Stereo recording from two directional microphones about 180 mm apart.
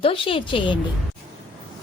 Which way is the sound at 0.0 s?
30° left (ahead or behind).